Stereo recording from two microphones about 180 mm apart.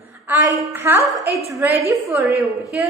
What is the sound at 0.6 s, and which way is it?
A woman's voice, 10° right (ahead or behind).